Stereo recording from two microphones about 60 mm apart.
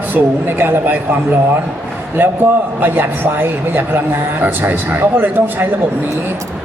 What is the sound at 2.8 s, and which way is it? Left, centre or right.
A man's voice, right.